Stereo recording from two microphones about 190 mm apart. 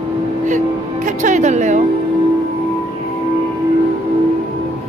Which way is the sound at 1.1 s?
40° right (ahead or behind).